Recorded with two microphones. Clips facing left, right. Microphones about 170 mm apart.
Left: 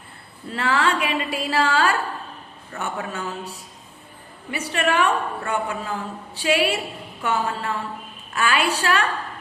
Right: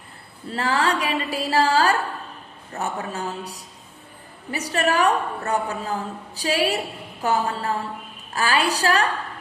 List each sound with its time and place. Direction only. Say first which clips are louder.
0.5 s a woman's voice: even; 35° right (ahead or behind)